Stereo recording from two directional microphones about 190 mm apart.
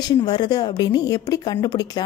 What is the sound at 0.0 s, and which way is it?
A woman's voice, 20° left (ahead or behind).